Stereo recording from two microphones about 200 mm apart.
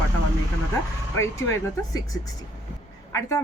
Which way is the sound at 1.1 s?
15° left (ahead or behind).